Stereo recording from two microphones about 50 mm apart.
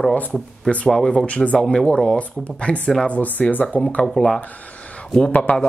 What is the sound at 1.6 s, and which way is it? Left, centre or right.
Speech, centre.